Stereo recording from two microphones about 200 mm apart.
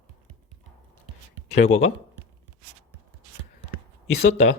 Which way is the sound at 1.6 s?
35° left (ahead or behind).